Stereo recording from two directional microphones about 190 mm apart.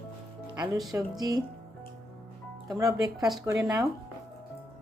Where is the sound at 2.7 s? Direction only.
20° right (ahead or behind).